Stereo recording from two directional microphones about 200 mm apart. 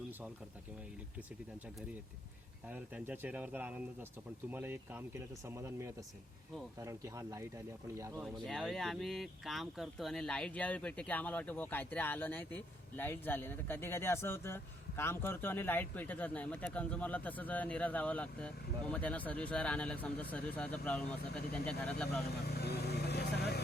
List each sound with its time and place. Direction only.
2.6 s speech: 10° right (ahead or behind)
8.2 s speech: centre (ahead or behind)
22.4 s vehicle: 55° left (ahead or behind)